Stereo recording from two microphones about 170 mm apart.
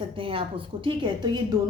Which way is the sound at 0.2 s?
30° right (ahead or behind).